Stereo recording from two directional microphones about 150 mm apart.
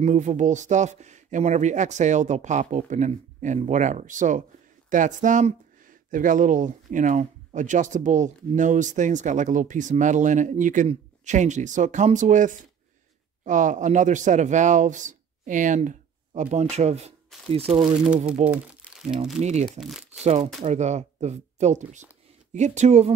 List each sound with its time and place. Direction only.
0.0 s speech: 50° right (ahead or behind)
18.0 s speech: 10° right (ahead or behind)
19.4 s speech: 50° right (ahead or behind)
19.8 s speech: centre (ahead or behind)
20.6 s speech: 50° right (ahead or behind)